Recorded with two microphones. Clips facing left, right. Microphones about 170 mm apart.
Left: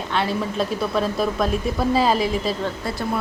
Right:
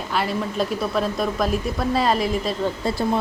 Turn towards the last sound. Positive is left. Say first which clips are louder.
# right 3 dB
turn(degrees=-25)  # may be behind; listen again after turning